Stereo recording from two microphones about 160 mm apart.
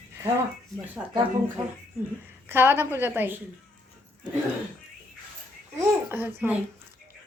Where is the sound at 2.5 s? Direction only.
15° right (ahead or behind).